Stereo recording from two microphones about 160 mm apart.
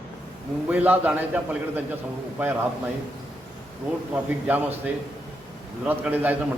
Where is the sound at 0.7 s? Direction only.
10° right (ahead or behind).